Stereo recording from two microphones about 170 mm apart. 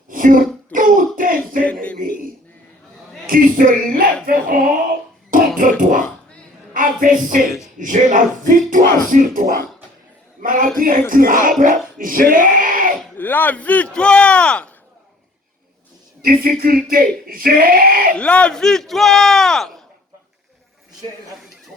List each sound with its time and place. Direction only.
0.1 s a sound: 55° right (ahead or behind)
3.2 s speech: 55° right (ahead or behind)
5.3 s dog: 50° right (ahead or behind)
6.7 s a sound: 55° right (ahead or behind)
7.8 s a man's voice: 50° right (ahead or behind)
13.1 s speech: 10° left (ahead or behind)
16.2 s speech: 60° right (ahead or behind)
18.2 s speech: 5° left (ahead or behind)